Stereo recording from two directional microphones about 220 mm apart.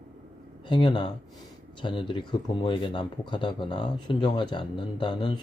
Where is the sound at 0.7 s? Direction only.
20° left (ahead or behind).